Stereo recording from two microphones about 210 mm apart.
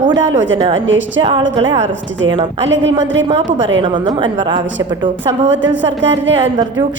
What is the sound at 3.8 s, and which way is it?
Speech, 25° right (ahead or behind).